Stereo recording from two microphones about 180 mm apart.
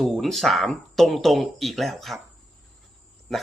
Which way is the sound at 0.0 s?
Centre (ahead or behind).